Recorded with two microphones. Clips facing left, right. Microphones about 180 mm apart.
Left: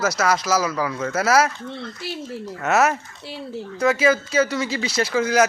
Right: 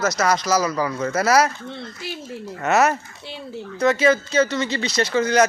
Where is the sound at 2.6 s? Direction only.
Centre (ahead or behind).